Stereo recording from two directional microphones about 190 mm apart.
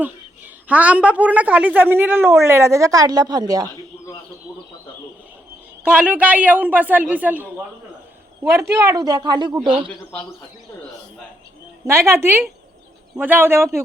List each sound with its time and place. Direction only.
0.0 s a woman's voice: 10° right (ahead or behind)
5.8 s a woman's voice: 10° right (ahead or behind)
8.4 s a woman's voice: 15° right (ahead or behind)
11.9 s a woman's voice: 15° right (ahead or behind)